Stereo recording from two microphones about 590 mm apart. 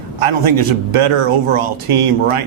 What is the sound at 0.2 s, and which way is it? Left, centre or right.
A man's voice, right.